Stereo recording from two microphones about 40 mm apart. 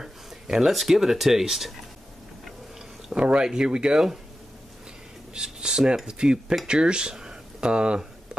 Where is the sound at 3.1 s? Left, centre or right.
Right.